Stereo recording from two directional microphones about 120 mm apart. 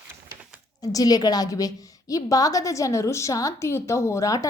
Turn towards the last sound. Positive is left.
turn(degrees=25)  # may be behind; listen again after turning